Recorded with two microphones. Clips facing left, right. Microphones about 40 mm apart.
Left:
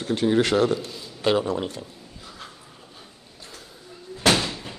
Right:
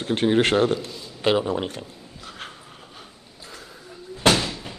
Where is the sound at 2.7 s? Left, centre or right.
Right.